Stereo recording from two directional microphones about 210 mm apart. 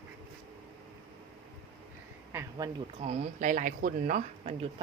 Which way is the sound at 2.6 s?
15° right (ahead or behind).